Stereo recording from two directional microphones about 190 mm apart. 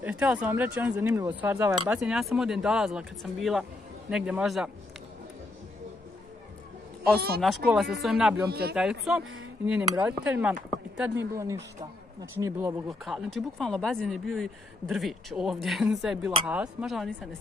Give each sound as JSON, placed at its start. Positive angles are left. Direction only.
{"t": 0.0, "sound": "speech", "side_deg": -5}
{"t": 7.4, "sound": "speech", "side_deg": 0}
{"t": 8.5, "sound": "speech", "side_deg": -55}
{"t": 9.9, "sound": "speech", "side_deg": -10}
{"t": 12.8, "sound": "speech", "side_deg": 0}